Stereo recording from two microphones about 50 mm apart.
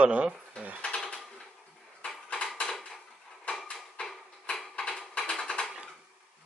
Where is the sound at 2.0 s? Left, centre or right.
Left.